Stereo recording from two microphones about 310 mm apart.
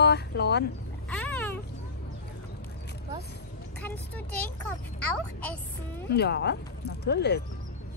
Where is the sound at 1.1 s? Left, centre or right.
Centre.